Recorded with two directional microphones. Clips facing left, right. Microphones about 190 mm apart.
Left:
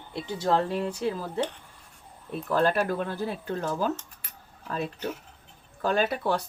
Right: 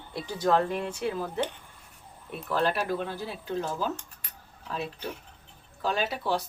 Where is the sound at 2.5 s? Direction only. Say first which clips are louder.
Left 3 dB; 45° left (ahead or behind).